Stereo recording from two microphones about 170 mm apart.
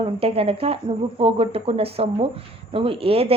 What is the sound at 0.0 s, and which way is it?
A woman's voice, 35° right (ahead or behind).